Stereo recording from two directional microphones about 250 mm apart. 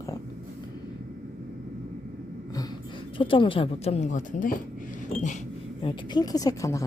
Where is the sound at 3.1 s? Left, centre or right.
Left.